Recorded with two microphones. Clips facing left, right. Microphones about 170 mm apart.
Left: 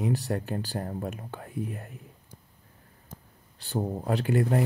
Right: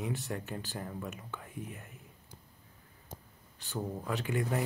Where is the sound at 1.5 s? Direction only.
40° left (ahead or behind).